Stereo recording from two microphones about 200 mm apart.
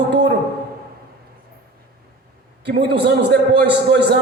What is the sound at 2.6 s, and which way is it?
A man's voice, 55° right (ahead or behind).